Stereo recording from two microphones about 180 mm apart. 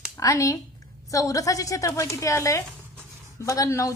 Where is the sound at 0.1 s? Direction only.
20° left (ahead or behind).